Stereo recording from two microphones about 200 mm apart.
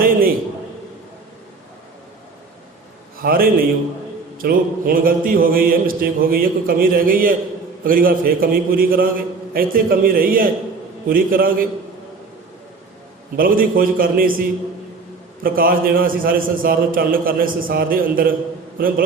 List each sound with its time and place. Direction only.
3.2 s mantra: 45° right (ahead or behind)
13.3 s mantra: 45° right (ahead or behind)
15.4 s mantra: 45° right (ahead or behind)